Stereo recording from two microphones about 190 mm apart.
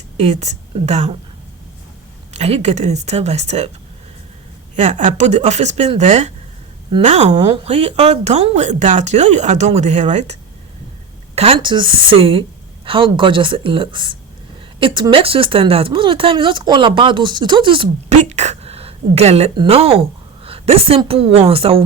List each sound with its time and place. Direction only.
0.2 s speech: 35° right (ahead or behind)
2.3 s speech: 35° right (ahead or behind)
4.8 s speech: 40° right (ahead or behind)
11.3 s a woman's voice: 30° right (ahead or behind)